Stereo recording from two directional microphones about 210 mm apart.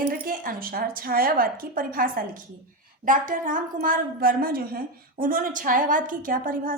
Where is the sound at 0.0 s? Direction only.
40° right (ahead or behind).